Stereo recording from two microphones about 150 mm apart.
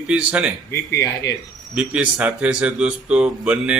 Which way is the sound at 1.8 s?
10° right (ahead or behind).